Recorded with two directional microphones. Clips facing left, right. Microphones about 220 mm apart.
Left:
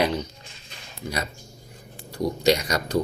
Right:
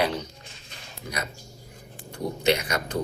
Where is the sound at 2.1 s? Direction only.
35° left (ahead or behind).